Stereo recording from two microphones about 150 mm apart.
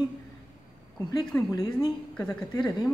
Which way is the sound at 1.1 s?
25° left (ahead or behind).